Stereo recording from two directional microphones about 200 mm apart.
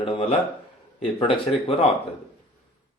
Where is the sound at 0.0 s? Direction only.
25° left (ahead or behind).